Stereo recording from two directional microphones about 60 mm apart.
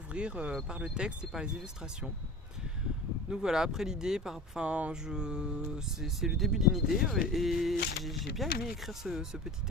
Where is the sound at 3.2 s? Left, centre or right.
Centre.